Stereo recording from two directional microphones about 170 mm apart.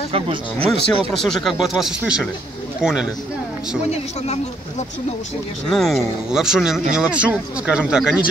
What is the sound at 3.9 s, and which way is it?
Speech, 40° left (ahead or behind).